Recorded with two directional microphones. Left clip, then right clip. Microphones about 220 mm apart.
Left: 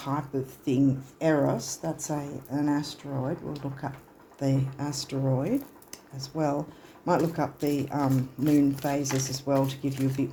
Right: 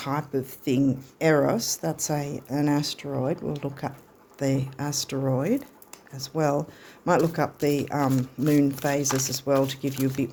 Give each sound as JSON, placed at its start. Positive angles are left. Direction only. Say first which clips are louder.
{"t": 0.0, "sound": "speech", "louder": "right 3 dB", "side_deg": -35}